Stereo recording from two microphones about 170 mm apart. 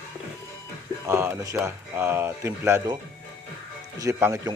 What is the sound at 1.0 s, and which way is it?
A man's voice, 15° right (ahead or behind).